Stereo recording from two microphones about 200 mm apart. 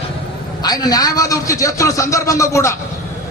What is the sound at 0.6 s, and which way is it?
A man's voice, 20° left (ahead or behind).